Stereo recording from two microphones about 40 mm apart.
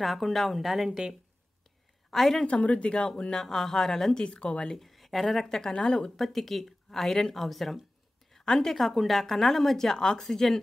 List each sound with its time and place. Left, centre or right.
0.0 s a woman's voice: centre
2.1 s a woman's voice: centre
2.4 s a woman's voice: left; by 4.2 s centre
4.2 s speech: left
4.6 s speech: centre
5.7 s a woman's voice: left
6.1 s a woman's voice: centre
7.3 s a woman's voice: centre
8.3 s a sound: centre
8.7 s a woman's voice: centre
10.2 s a woman's voice: centre